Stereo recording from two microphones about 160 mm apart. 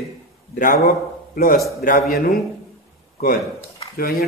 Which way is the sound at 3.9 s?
75° left (ahead or behind).